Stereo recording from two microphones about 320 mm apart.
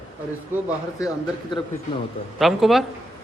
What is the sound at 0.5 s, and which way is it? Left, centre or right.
Speech, centre.